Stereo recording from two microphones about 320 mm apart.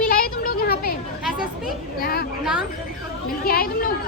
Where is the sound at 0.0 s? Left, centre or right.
Left.